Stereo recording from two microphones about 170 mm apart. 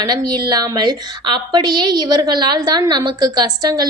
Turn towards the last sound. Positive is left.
turn(degrees=-25)  # may be behind; listen again after turning